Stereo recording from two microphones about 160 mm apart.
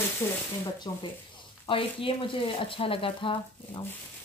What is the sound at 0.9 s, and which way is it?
Speech, 25° left (ahead or behind).